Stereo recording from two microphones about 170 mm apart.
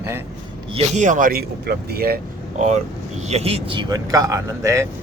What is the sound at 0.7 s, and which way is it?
Speech, 40° right (ahead or behind).